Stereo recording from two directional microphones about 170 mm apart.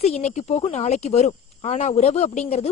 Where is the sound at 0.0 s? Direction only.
40° left (ahead or behind).